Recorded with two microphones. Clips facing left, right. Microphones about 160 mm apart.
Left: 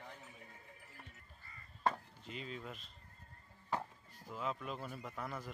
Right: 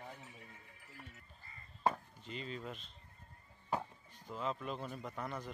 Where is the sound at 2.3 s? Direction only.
Centre (ahead or behind).